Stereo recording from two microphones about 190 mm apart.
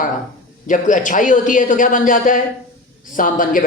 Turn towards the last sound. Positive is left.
turn(degrees=45)  # may be behind; listen again after turning